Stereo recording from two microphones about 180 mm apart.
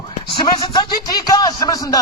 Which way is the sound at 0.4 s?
25° left (ahead or behind).